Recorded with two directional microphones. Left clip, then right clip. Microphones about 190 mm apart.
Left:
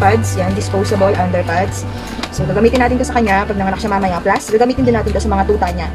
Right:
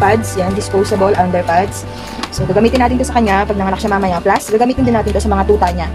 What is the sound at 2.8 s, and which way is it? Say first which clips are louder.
A woman's voice: right 1 dB; 30° right (ahead or behind).